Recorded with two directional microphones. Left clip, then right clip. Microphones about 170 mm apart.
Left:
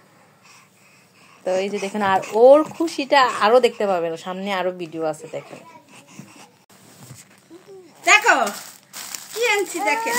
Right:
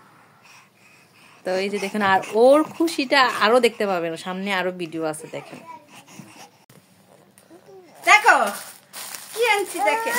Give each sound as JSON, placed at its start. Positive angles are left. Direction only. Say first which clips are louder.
{"t": 1.4, "sound": "speech", "louder": "left 2 dB", "side_deg": -15}
{"t": 5.2, "sound": "babbling", "louder": "left 2 dB", "side_deg": -20}
{"t": 8.0, "sound": "a sound", "louder": "even", "side_deg": -30}
{"t": 9.4, "sound": "speech", "louder": "even", "side_deg": -35}